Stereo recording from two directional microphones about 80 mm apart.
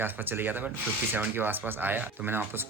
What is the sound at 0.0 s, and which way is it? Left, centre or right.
Speech, right.